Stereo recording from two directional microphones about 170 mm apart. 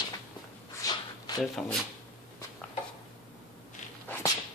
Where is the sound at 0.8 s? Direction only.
25° left (ahead or behind).